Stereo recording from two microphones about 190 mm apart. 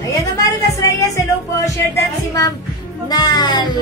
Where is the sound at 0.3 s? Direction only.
15° left (ahead or behind).